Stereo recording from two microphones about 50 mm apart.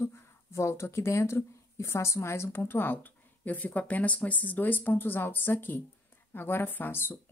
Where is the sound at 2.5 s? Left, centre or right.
Left.